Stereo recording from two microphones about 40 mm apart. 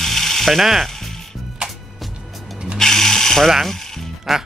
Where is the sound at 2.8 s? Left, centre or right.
Centre.